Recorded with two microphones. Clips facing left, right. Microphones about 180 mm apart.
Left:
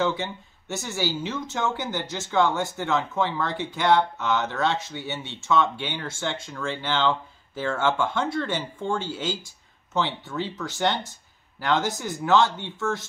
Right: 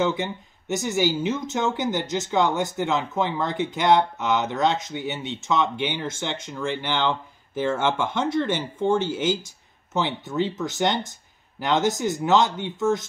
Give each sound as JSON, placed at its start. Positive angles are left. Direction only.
{"t": 0.0, "sound": "speech", "side_deg": -20}